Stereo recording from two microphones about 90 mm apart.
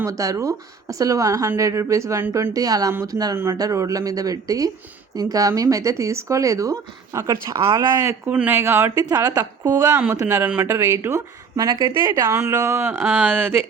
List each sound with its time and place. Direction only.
0.0 s a woman's voice: 40° right (ahead or behind)
3.3 s speech: 30° right (ahead or behind)
8.3 s speech: 20° right (ahead or behind)
9.0 s a woman's voice: 45° right (ahead or behind)
9.9 s speech: 20° right (ahead or behind)
11.5 s a woman's voice: 45° right (ahead or behind)
12.1 s speech: 30° right (ahead or behind)